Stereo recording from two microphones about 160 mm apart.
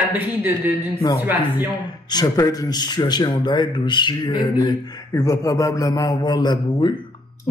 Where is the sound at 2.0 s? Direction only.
25° left (ahead or behind).